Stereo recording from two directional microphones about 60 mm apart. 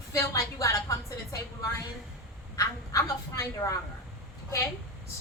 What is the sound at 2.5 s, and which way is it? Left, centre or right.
Speech, left.